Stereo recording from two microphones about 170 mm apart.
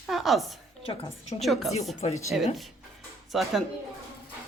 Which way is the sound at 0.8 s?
35° left (ahead or behind).